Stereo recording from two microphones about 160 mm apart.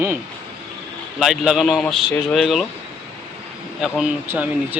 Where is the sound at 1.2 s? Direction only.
Centre (ahead or behind).